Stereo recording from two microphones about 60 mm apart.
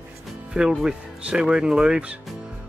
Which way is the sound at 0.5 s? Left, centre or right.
Centre.